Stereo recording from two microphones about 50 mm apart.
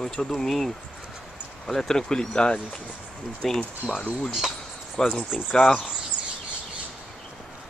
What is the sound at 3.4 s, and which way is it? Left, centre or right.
Speech, centre.